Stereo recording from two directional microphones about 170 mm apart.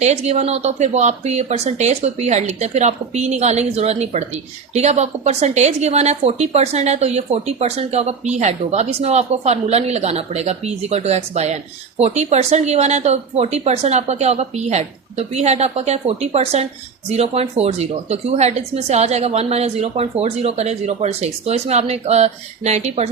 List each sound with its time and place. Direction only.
0.0 s speech: 40° right (ahead or behind)